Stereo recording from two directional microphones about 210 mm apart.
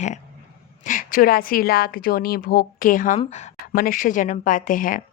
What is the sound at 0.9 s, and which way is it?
A woman's voice, 40° left (ahead or behind).